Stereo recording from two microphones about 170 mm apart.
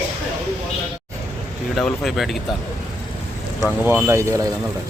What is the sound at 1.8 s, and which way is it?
Speech, centre (ahead or behind).